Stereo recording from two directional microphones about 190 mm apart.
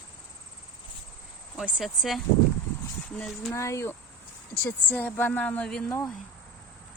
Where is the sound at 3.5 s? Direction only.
15° left (ahead or behind).